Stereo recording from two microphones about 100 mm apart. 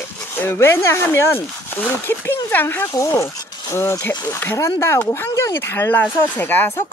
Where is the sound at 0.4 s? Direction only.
20° left (ahead or behind).